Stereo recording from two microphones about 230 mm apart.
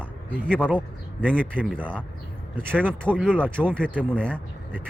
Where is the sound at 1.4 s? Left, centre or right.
Centre.